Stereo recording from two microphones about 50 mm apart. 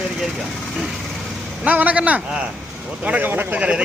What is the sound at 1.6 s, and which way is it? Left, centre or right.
A man's voice, right.